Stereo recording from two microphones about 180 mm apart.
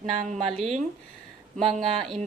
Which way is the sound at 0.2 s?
40° right (ahead or behind).